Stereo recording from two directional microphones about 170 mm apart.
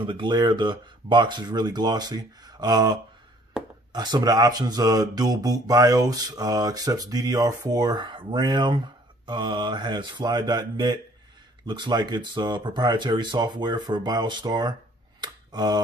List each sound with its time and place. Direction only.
0.0 s speech: 30° right (ahead or behind)